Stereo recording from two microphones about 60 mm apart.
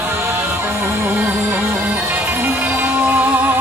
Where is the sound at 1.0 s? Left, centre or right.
Right.